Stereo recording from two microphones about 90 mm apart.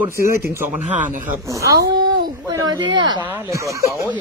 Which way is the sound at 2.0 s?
55° right (ahead or behind).